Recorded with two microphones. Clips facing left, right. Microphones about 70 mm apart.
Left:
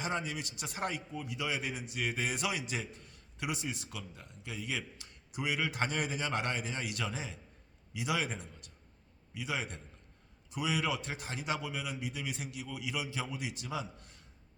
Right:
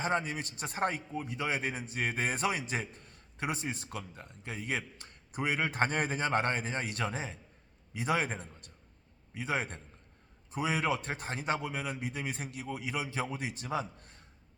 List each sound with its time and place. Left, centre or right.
0.0 s a man's voice: right